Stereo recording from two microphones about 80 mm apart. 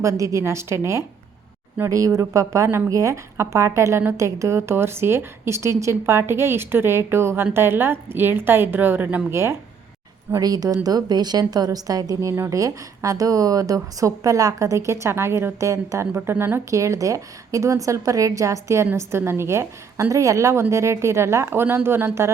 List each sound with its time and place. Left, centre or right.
0.0 s a woman's voice: right
1.9 s a woman's voice: right
9.3 s a woman's voice: right
10.4 s a woman's voice: right
12.3 s a woman's voice: right
16.6 s a woman's voice: right